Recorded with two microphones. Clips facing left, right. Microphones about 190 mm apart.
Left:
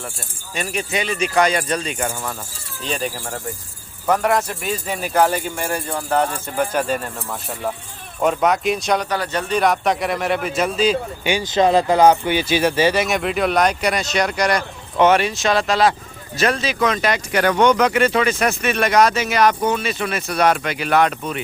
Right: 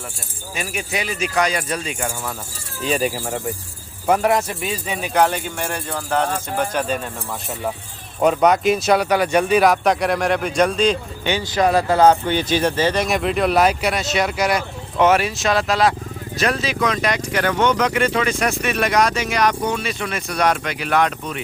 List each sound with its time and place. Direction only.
0.5 s speech: 5° right (ahead or behind)
8.2 s speech: centre (ahead or behind)
11.5 s speech: 20° left (ahead or behind); by 17.2 s centre (ahead or behind)
17.5 s speech: 50° left (ahead or behind)
18.3 s speech: 5° left (ahead or behind)